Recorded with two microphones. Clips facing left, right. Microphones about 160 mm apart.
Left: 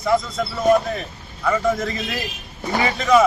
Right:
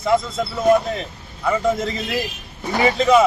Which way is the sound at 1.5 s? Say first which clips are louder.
Right 1 dB; 20° right (ahead or behind).